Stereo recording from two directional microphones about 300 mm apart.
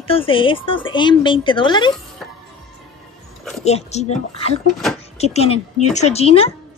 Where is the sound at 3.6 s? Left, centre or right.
Left.